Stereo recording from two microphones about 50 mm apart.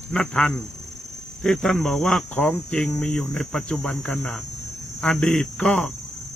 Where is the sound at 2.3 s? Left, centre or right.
Left.